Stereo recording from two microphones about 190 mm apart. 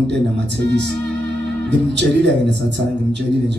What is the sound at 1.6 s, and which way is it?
Speech, 65° right (ahead or behind).